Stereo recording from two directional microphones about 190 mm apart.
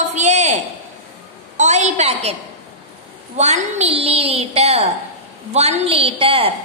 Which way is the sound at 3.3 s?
35° right (ahead or behind).